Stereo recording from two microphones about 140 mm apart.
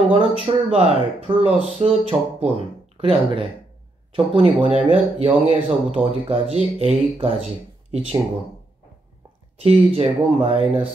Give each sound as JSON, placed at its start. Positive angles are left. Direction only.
{"t": 0.5, "sound": "speech", "side_deg": -45}
{"t": 9.6, "sound": "speech", "side_deg": -45}